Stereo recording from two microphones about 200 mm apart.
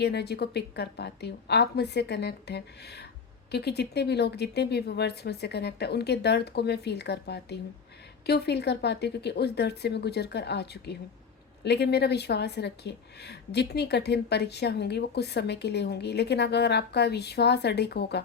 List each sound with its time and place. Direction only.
0.0 s a woman's voice: 55° left (ahead or behind)